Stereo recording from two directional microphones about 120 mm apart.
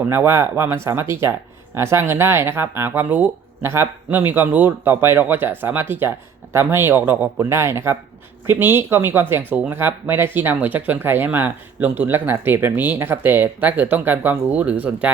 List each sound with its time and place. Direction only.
0.0 s speech: 20° right (ahead or behind)